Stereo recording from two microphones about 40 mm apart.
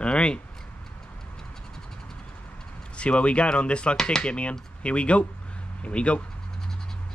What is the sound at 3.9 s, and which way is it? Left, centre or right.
Rub, centre.